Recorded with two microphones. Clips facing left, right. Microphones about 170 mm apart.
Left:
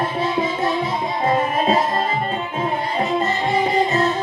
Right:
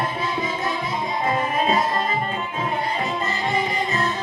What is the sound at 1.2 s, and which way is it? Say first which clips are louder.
Music: left 4 dB; 35° left (ahead or behind).